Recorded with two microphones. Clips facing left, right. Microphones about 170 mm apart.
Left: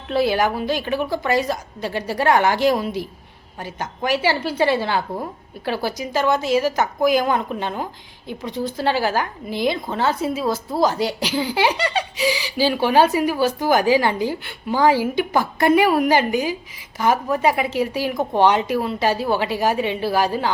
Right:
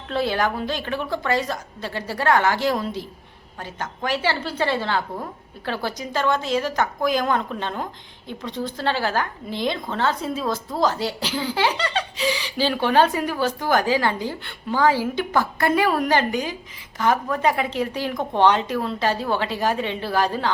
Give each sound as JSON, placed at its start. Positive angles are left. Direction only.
{"t": 0.1, "sound": "a woman's voice", "side_deg": 10}